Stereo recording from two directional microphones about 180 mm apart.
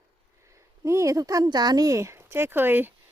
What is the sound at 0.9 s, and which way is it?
Speech, 15° right (ahead or behind).